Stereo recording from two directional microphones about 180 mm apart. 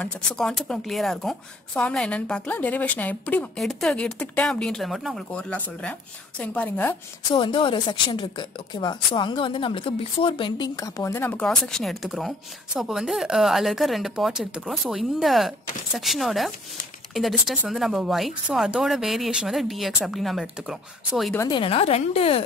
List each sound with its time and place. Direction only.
0.0 s a woman's voice: 5° left (ahead or behind)
7.2 s a woman's voice: 25° left (ahead or behind); by 20.7 s centre (ahead or behind)
21.4 s a woman's voice: 25° left (ahead or behind)